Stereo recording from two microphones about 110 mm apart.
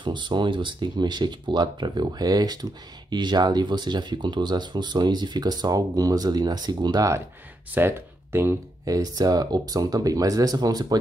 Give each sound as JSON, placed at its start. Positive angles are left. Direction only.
{"t": 0.0, "sound": "speech", "side_deg": -45}
{"t": 7.7, "sound": "speech", "side_deg": -20}